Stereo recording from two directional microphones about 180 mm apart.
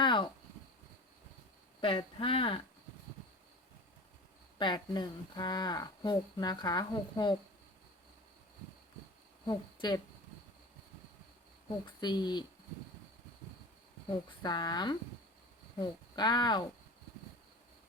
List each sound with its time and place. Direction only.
0.0 s a sound: 25° left (ahead or behind)
1.8 s speech: 30° left (ahead or behind)
4.5 s speech: 25° left (ahead or behind)
9.5 s speech: 25° left (ahead or behind)
11.9 s speech: 25° left (ahead or behind)
14.1 s speech: 25° left (ahead or behind)